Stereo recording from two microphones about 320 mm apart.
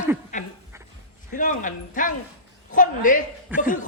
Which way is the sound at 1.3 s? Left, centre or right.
Left.